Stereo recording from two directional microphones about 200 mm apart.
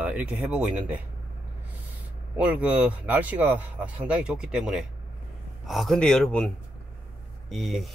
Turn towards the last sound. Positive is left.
turn(degrees=0)  # may be behind; listen again after turning